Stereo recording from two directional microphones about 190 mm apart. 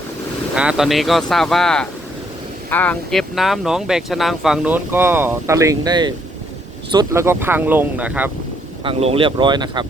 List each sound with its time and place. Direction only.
0.5 s speech: 5° right (ahead or behind)
8.8 s speech: 30° right (ahead or behind)